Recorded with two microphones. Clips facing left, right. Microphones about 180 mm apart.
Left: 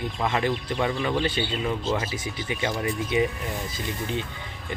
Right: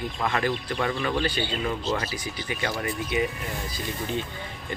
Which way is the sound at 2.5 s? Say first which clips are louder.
Left 2 dB; 20° left (ahead or behind).